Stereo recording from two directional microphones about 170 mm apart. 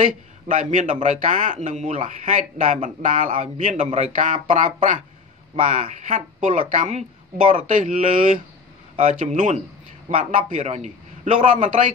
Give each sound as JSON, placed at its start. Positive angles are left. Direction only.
{"t": 0.0, "sound": "speech", "side_deg": -50}